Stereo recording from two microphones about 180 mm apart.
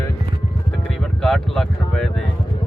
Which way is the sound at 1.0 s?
Centre (ahead or behind).